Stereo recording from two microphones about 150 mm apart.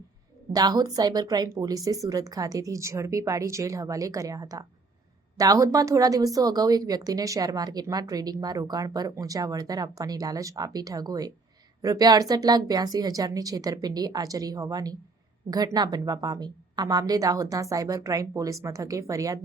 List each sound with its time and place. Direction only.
0.5 s a woman's voice: 25° right (ahead or behind)